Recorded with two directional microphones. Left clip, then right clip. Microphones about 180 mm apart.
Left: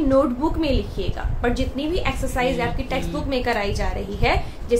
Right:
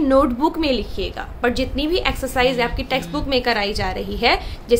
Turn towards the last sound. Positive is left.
turn(degrees=-35)  # may be behind; listen again after turning